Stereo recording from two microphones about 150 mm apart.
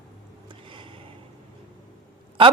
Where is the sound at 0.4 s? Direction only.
35° right (ahead or behind).